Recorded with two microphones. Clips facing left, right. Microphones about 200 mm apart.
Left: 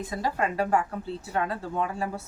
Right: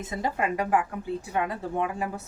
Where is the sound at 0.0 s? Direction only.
20° right (ahead or behind).